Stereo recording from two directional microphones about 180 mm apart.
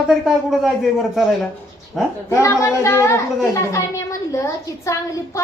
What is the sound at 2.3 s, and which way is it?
A woman's voice, 15° left (ahead or behind).